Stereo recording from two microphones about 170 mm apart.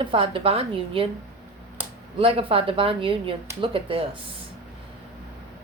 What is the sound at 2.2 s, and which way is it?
A woman's voice, 35° right (ahead or behind).